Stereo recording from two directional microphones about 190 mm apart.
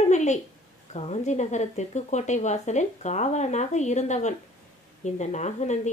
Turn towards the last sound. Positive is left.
turn(degrees=35)  # may be behind; listen again after turning